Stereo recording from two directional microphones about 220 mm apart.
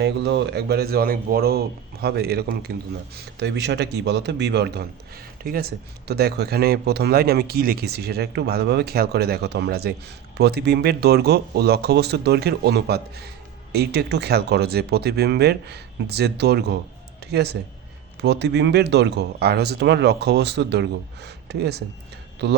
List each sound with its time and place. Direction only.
0.0 s a man's voice: 50° right (ahead or behind)